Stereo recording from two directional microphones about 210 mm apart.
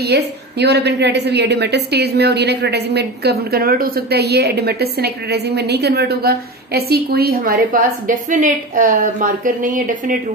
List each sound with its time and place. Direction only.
0.0 s a woman's voice: 50° right (ahead or behind)